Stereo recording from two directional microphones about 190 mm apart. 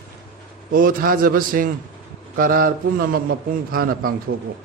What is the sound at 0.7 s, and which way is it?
A man's voice, 45° right (ahead or behind).